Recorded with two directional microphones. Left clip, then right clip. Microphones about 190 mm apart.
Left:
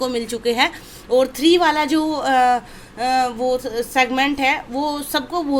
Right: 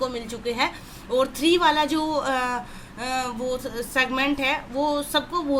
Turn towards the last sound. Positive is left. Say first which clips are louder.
# left 3 dB
turn(degrees=40)  # may be behind; listen again after turning